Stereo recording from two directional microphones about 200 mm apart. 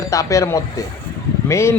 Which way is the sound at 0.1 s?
15° left (ahead or behind).